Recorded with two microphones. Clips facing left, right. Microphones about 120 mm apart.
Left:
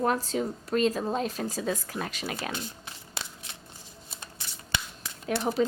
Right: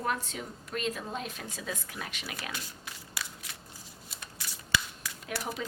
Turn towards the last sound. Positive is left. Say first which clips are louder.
# left 9 dB
turn(degrees=30)  # may be behind; listen again after turning